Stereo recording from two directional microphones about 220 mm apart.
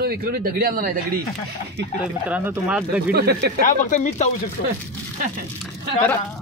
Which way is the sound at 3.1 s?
45° right (ahead or behind).